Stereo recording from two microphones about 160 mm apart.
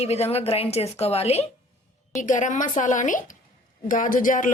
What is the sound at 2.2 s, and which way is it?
Speech, 50° left (ahead or behind).